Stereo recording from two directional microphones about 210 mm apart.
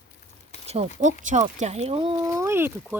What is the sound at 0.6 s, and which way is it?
Speech, 30° right (ahead or behind).